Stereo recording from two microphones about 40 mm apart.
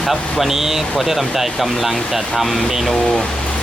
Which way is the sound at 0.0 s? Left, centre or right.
Centre.